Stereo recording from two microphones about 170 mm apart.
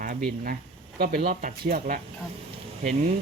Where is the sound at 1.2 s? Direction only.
50° right (ahead or behind).